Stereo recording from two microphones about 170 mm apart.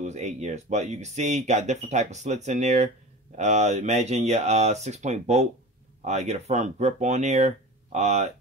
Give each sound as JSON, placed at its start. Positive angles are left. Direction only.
{"t": 0.0, "sound": "speech", "side_deg": -45}